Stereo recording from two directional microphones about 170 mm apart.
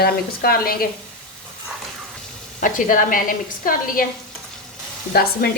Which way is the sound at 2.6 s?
50° left (ahead or behind).